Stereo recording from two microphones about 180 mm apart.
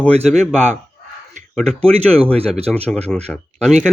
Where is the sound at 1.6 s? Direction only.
5° left (ahead or behind).